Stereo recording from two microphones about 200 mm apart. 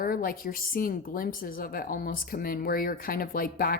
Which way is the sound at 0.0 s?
45° left (ahead or behind).